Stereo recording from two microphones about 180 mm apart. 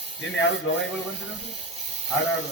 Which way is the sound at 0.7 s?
90° left.